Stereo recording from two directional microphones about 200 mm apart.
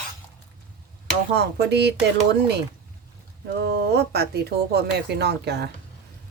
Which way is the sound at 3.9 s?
55° right (ahead or behind).